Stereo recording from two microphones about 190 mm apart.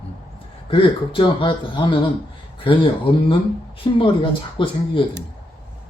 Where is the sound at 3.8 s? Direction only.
25° left (ahead or behind).